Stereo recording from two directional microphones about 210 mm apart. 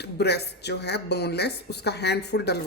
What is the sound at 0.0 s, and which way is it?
Speech, 50° left (ahead or behind).